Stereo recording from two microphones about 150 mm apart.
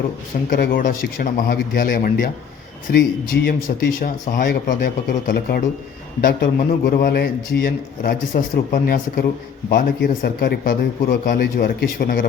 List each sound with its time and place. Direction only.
0.5 s a man's voice: 70° left (ahead or behind)
2.9 s a man's voice: 90° left
3.7 s a man's voice: 65° left (ahead or behind)